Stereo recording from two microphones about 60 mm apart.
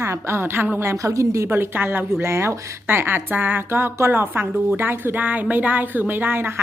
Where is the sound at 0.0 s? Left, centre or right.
Right.